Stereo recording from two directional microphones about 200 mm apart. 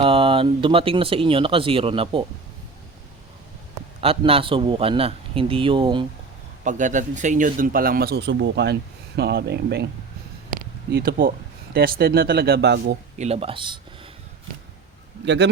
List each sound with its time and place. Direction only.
0.0 s speech: 25° right (ahead or behind)
4.0 s speech: 30° right (ahead or behind)
6.7 s speech: 40° right (ahead or behind); by 13.0 s 55° right (ahead or behind)
13.1 s speech: 30° right (ahead or behind)
15.2 s speech: 60° right (ahead or behind)